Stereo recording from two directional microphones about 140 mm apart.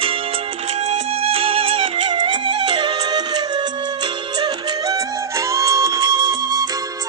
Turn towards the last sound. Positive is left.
turn(degrees=-30)  # may be behind; listen again after turning